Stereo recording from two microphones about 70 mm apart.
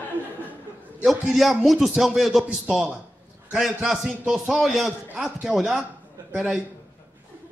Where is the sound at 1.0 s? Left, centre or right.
Centre.